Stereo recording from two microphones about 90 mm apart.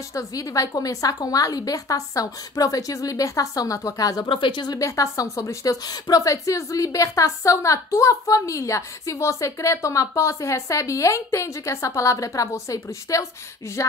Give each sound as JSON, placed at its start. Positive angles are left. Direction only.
{"t": 0.1, "sound": "speech", "side_deg": 40}
{"t": 4.3, "sound": "speech", "side_deg": 60}
{"t": 4.7, "sound": "speech", "side_deg": 35}